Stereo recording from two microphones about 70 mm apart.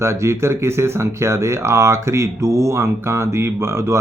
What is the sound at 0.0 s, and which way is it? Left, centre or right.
Speech, right.